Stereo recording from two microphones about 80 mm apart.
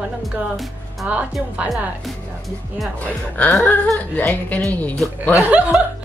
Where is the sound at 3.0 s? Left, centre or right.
Centre.